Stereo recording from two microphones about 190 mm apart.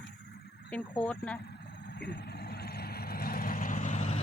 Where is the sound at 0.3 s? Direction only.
60° left (ahead or behind).